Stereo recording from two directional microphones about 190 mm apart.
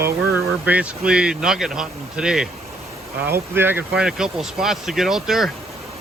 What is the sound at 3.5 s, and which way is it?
Speech, 10° right (ahead or behind).